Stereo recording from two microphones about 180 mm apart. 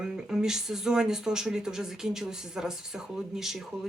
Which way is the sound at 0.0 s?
5° right (ahead or behind).